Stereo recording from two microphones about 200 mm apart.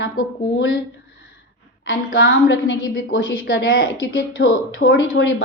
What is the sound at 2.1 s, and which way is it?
A woman's voice, 60° left (ahead or behind).